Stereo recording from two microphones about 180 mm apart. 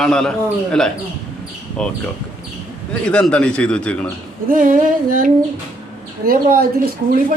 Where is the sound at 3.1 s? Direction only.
5° left (ahead or behind).